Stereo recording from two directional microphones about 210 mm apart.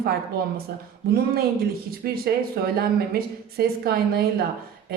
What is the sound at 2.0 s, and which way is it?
Speech, 45° right (ahead or behind).